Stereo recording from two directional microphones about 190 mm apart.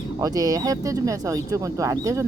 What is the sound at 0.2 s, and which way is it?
Speech, 20° right (ahead or behind).